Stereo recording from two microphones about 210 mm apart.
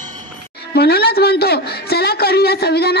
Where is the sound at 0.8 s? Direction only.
50° left (ahead or behind).